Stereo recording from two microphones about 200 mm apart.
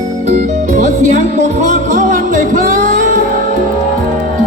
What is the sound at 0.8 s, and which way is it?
Music, 40° right (ahead or behind).